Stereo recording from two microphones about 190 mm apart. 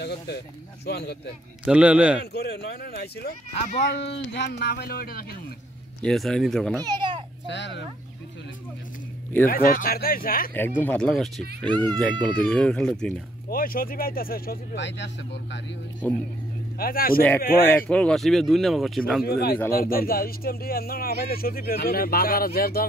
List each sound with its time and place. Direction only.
0.0 s speech: 60° left (ahead or behind)
1.7 s a man's voice: 5° right (ahead or behind)
2.3 s speech: 55° left (ahead or behind)
3.5 s speech: 35° left (ahead or behind)
3.9 s speech: 65° left (ahead or behind)
6.0 s a man's voice: centre (ahead or behind)
6.8 s a child's voice: 20° right (ahead or behind)
7.4 s speech: 65° left (ahead or behind)
9.5 s speech: 50° left (ahead or behind)
10.5 s a man's voice: 10° left (ahead or behind)
13.5 s speech: 50° left (ahead or behind); by 15.0 s 70° left (ahead or behind)
16.7 s speech: 50° left (ahead or behind)
17.6 s a man's voice: 10° left (ahead or behind)
19.2 s speech: 55° left (ahead or behind)